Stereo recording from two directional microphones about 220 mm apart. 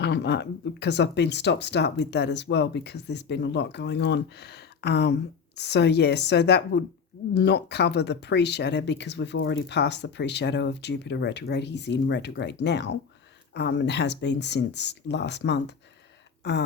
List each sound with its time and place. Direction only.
0.0 s speech: 50° left (ahead or behind)